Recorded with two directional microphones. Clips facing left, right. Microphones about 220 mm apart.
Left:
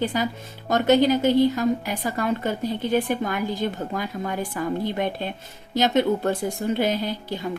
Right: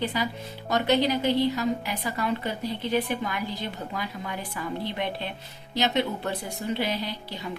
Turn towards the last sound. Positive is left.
turn(degrees=50)  # may be behind; listen again after turning